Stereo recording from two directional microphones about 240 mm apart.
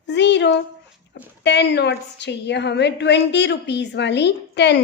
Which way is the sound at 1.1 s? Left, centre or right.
Left.